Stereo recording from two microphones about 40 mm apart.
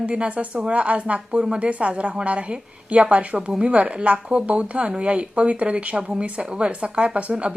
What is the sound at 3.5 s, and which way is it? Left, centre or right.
A woman's voice, right.